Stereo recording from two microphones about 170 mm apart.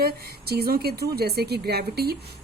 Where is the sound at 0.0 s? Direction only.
65° right (ahead or behind).